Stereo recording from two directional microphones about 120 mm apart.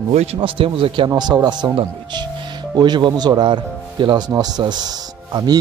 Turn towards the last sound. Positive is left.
turn(degrees=-35)  # may be behind; listen again after turning